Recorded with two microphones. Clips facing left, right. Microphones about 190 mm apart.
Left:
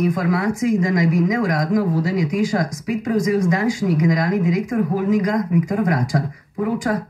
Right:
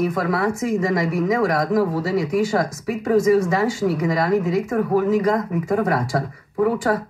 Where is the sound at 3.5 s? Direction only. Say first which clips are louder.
Left 1 dB; 30° right (ahead or behind).